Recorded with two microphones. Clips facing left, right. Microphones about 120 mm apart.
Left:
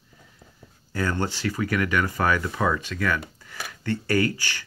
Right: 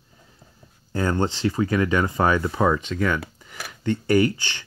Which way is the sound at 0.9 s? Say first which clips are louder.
Right 3 dB; 25° right (ahead or behind).